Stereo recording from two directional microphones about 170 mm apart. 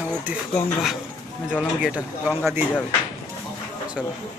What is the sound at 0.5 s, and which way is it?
Speech, centre (ahead or behind).